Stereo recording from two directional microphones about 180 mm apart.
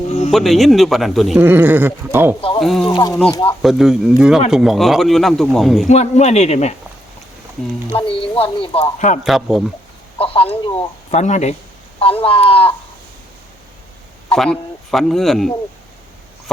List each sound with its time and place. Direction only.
0.3 s speech: centre (ahead or behind)
1.4 s speech: 10° right (ahead or behind)
2.6 s speech: centre (ahead or behind)
2.9 s speech: 20° left (ahead or behind)
3.6 s speech: centre (ahead or behind)
5.9 s speech: 40° left (ahead or behind)
7.9 s speech: 30° left (ahead or behind)
9.2 s speech: centre (ahead or behind)
10.2 s speech: 30° left (ahead or behind)
14.3 s speech: 5° left (ahead or behind)